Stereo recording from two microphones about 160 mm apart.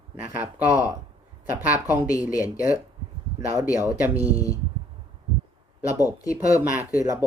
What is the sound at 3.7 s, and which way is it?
Speech, 10° right (ahead or behind).